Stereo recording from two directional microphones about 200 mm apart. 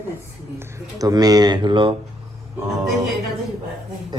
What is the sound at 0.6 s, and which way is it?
Speech, 15° right (ahead or behind).